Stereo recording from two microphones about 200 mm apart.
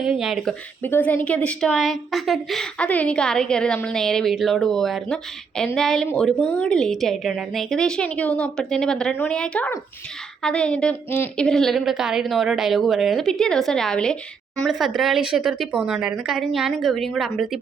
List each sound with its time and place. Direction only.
0.0 s a woman's voice: centre (ahead or behind)